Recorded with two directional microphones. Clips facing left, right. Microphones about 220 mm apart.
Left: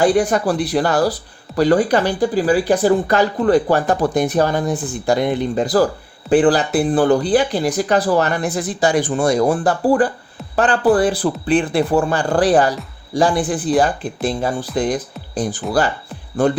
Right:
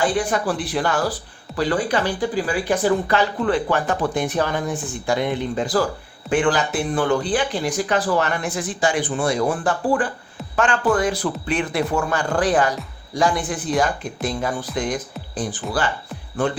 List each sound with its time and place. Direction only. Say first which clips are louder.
0.0 s speech: left 6 dB; 40° left (ahead or behind)
16.4 s speech: left 6 dB; 40° left (ahead or behind)